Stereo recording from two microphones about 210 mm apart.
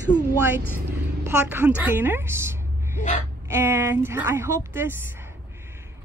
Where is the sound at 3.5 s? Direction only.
10° right (ahead or behind).